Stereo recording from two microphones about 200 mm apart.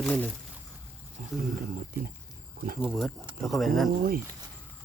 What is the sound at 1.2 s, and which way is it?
Speech, 40° right (ahead or behind).